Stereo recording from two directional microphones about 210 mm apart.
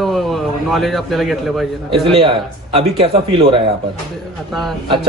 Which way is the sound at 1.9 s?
25° right (ahead or behind).